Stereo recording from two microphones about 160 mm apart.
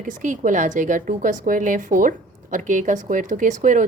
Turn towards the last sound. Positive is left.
turn(degrees=-50)  # may be behind; listen again after turning